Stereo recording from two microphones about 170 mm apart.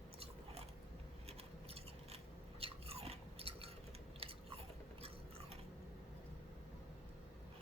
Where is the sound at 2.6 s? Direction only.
35° right (ahead or behind).